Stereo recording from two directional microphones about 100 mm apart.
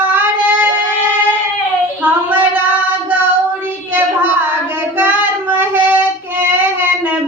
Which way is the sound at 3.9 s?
20° right (ahead or behind).